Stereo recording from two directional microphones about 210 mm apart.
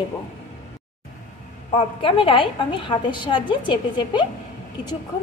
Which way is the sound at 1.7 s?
25° left (ahead or behind).